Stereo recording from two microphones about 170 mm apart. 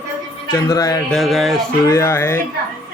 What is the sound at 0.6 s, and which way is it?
Speech, 20° left (ahead or behind).